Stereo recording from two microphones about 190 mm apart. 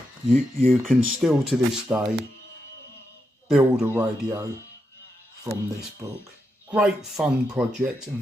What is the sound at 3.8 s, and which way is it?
Speech, 15° right (ahead or behind).